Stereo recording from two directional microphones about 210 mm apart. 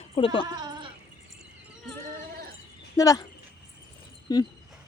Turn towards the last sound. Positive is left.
turn(degrees=20)  # may be behind; listen again after turning